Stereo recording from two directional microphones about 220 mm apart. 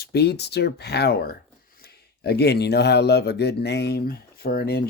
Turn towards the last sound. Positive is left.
turn(degrees=45)  # may be behind; listen again after turning